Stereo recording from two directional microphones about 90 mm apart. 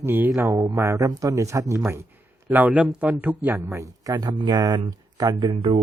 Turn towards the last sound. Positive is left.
turn(degrees=-65)  # may be behind; listen again after turning